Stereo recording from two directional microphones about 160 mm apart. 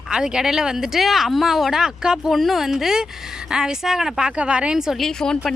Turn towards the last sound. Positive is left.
turn(degrees=5)  # may be behind; listen again after turning